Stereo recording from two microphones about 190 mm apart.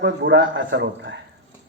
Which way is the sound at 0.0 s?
70° right (ahead or behind).